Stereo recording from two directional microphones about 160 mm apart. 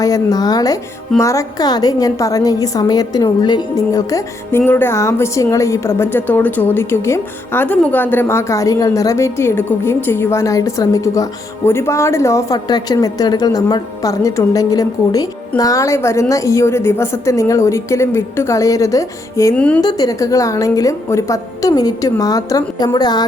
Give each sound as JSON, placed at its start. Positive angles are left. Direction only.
{"t": 0.0, "sound": "a woman's voice", "side_deg": 20}
{"t": 19.5, "sound": "a woman's voice", "side_deg": 10}
{"t": 19.8, "sound": "a woman's voice", "side_deg": 25}